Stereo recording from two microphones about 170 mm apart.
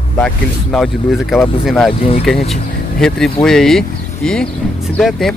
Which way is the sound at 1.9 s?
35° left (ahead or behind).